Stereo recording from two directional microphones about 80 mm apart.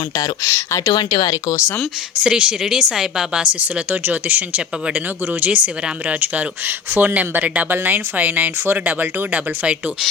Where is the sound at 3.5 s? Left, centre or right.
Right.